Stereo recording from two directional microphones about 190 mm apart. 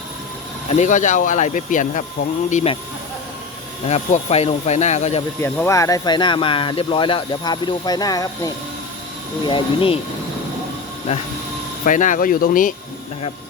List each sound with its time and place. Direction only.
0.7 s speech: 40° left (ahead or behind)
3.8 s speech: 35° left (ahead or behind)
5.4 s speech: 15° left (ahead or behind)
11.1 s speech: 40° left (ahead or behind)